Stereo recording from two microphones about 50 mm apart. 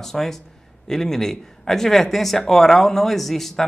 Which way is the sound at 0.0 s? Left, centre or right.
Centre.